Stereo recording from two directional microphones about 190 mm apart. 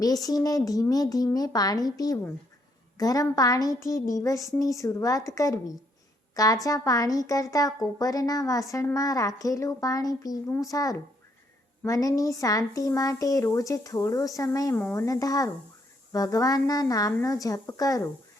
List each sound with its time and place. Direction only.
0.0 s a woman's voice: 20° left (ahead or behind)